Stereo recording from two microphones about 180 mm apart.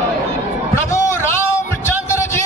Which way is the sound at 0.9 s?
15° left (ahead or behind).